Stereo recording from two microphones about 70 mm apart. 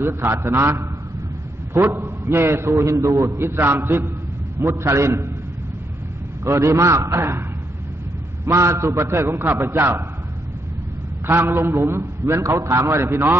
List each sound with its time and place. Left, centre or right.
0.0 s a man's voice: right
3.3 s a man's voice: right
6.4 s a man's voice: right
8.5 s a man's voice: right
11.2 s a man's voice: right